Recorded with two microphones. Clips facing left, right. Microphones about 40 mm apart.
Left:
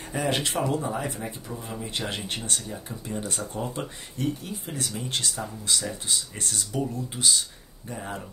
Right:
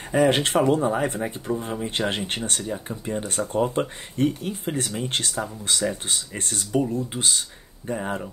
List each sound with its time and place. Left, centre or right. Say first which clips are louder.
0.1 s speech: right 8 dB; right